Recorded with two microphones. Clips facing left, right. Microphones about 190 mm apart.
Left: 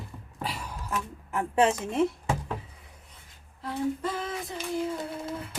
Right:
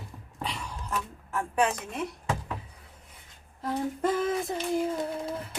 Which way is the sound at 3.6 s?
45° right (ahead or behind).